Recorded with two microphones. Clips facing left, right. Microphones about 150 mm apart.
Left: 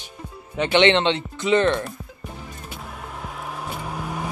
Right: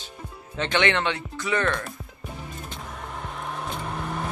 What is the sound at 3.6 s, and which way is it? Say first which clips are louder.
Vehicle: left 2 dB; 5° left (ahead or behind).